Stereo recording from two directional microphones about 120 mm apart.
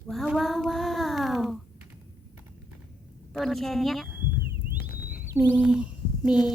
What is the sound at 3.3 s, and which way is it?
Speech, centre (ahead or behind).